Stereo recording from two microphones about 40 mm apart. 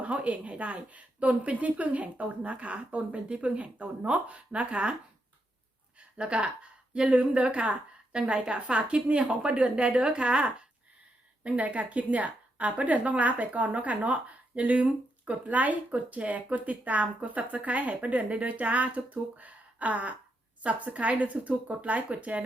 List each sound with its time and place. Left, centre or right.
0.0 s a woman's voice: right
6.1 s a woman's voice: right
11.4 s a woman's voice: right